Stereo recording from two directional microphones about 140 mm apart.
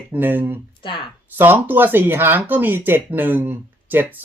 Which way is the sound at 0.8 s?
35° left (ahead or behind).